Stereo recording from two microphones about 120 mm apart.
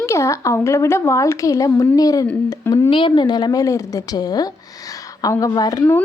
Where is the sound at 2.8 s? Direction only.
45° left (ahead or behind).